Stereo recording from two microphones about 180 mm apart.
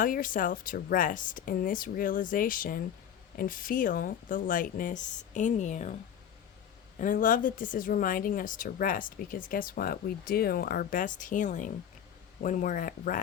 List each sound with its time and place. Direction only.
0.0 s speech: 50° left (ahead or behind)
7.0 s speech: 50° left (ahead or behind)